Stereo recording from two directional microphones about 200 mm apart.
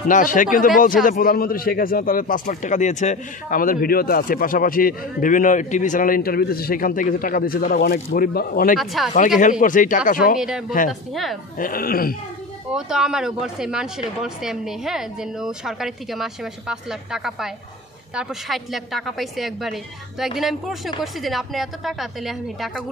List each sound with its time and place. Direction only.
0.1 s a man's voice: 40° left (ahead or behind)
8.7 s speech: centre (ahead or behind)
9.4 s speech: 40° left (ahead or behind)
10.9 s speech: centre (ahead or behind)
11.5 s a man's voice: 45° left (ahead or behind)
12.7 s speech: 5° right (ahead or behind)